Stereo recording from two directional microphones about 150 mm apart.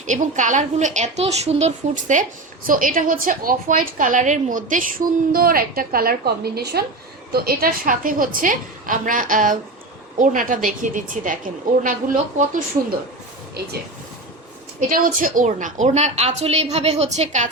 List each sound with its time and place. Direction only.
0.0 s a woman's voice: 55° right (ahead or behind)
2.6 s a woman's voice: 65° right (ahead or behind)
14.8 s a woman's voice: 65° right (ahead or behind); by 17.5 s 50° right (ahead or behind)